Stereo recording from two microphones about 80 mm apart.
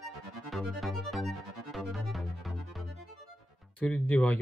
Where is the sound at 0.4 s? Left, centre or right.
Centre.